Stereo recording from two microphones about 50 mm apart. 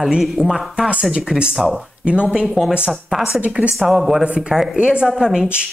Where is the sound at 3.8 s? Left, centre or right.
Centre.